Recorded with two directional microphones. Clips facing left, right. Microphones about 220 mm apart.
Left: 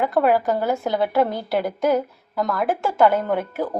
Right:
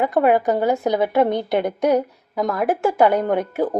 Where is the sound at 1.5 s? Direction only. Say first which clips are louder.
Right 2 dB; centre (ahead or behind).